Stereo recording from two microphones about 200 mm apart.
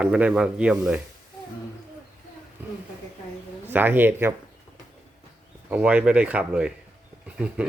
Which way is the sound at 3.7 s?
10° right (ahead or behind).